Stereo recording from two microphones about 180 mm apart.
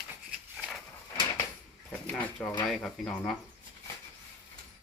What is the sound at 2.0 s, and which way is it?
Speech, 10° left (ahead or behind).